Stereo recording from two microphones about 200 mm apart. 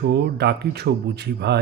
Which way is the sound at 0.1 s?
55° right (ahead or behind).